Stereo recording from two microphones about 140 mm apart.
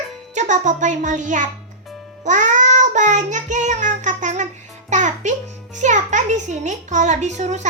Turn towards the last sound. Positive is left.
turn(degrees=-55)  # may be behind; listen again after turning